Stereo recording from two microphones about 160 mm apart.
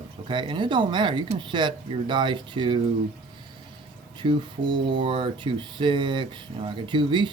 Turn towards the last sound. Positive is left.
turn(degrees=-30)  # may be behind; listen again after turning